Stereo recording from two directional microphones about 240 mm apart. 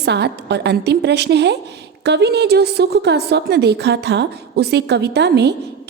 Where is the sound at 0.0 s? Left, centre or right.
Right.